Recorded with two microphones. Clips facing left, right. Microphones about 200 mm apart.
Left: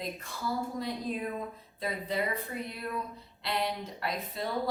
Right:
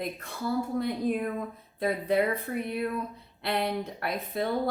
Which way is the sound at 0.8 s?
55° right (ahead or behind).